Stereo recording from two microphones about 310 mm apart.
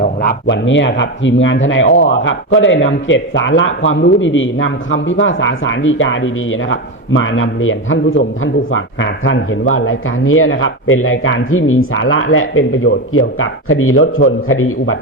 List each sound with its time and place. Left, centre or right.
0.0 s speech: left